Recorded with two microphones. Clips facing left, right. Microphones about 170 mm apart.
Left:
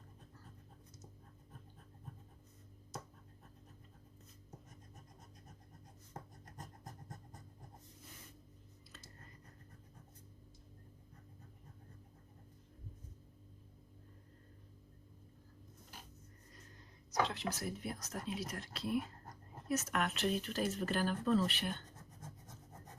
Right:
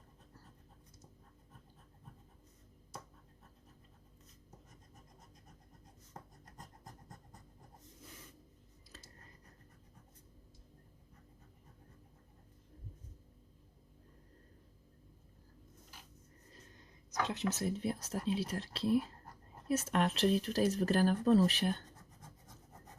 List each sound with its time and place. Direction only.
17.2 s speech: 20° right (ahead or behind); by 21.8 s 40° right (ahead or behind)